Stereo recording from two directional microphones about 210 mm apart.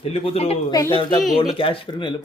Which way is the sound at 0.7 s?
15° left (ahead or behind).